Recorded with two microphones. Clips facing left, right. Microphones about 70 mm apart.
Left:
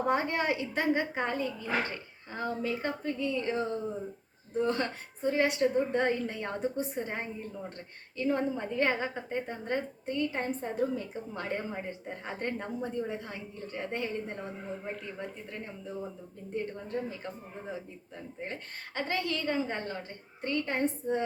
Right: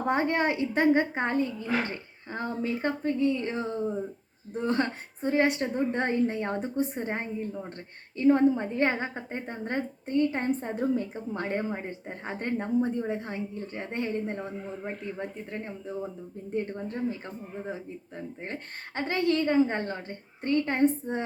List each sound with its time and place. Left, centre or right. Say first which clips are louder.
0.1 s a woman's voice: right 5 dB; right
4.6 s a woman's voice: right 3 dB; right